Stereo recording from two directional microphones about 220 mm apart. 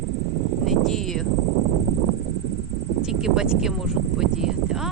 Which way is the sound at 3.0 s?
5° right (ahead or behind).